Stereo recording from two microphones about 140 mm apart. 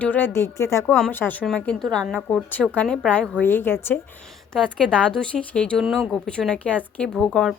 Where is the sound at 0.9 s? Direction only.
10° left (ahead or behind).